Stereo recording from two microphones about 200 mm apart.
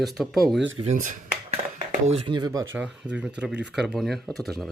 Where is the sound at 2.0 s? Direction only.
25° right (ahead or behind).